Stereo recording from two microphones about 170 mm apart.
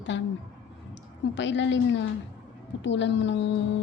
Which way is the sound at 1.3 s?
90° left.